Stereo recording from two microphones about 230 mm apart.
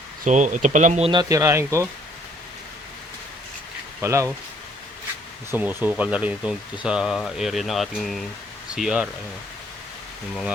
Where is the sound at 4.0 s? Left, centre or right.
Centre.